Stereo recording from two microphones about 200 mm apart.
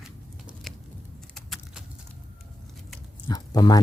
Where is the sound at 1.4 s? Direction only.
Centre (ahead or behind).